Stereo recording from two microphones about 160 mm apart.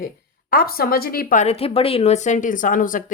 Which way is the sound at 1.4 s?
40° left (ahead or behind).